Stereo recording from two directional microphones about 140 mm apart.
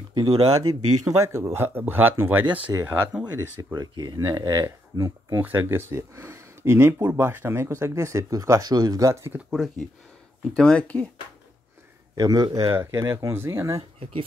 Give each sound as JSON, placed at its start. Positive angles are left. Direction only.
{"t": 0.1, "sound": "speech", "side_deg": -30}
{"t": 9.5, "sound": "speech", "side_deg": 0}
{"t": 12.2, "sound": "speech", "side_deg": -30}